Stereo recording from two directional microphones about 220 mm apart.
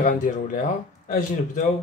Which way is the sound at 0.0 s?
35° left (ahead or behind).